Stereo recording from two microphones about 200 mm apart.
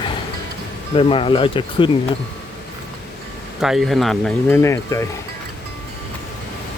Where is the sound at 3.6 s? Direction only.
Centre (ahead or behind).